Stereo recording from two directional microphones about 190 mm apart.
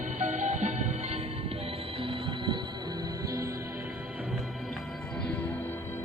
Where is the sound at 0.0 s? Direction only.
40° right (ahead or behind).